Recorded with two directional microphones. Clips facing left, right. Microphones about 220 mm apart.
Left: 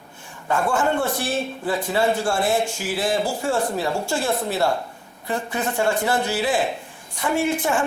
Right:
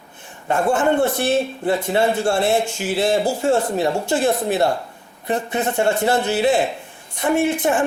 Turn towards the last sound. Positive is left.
turn(degrees=-20)  # may be behind; listen again after turning